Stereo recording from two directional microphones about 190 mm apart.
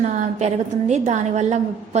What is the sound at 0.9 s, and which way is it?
Speech, 35° right (ahead or behind).